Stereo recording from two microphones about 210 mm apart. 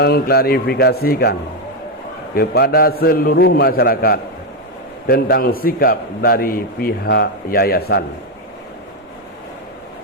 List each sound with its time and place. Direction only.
0.0 s a man's voice: 50° left (ahead or behind)